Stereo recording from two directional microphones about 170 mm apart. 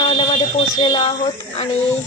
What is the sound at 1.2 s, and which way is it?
Speech, 40° left (ahead or behind).